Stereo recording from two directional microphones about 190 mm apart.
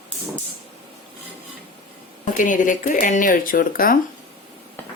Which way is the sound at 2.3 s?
45° left (ahead or behind).